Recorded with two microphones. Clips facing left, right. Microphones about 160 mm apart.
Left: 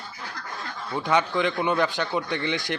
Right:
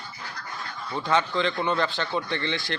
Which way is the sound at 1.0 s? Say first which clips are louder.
Left 1 dB; 15° left (ahead or behind).